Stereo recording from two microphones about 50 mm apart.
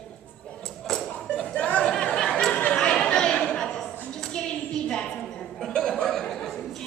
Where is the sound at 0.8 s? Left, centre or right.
Centre.